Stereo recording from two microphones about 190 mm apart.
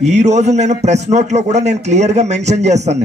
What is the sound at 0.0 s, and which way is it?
Speech, 35° right (ahead or behind).